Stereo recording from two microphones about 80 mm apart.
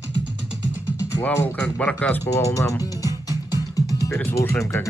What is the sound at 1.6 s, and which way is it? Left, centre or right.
Speech, centre.